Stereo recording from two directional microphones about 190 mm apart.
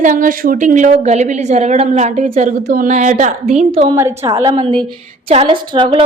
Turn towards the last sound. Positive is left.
turn(degrees=-25)  # may be behind; listen again after turning